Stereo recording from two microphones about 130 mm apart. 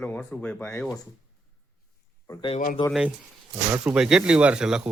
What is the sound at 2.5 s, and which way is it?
Speech, 90° left.